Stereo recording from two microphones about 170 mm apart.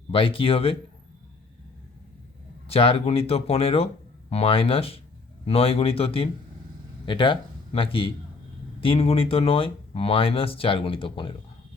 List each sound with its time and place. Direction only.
0.1 s speech: 30° left (ahead or behind)
2.6 s speech: 35° left (ahead or behind)